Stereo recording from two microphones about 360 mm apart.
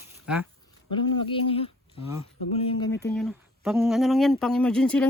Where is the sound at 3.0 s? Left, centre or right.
Centre.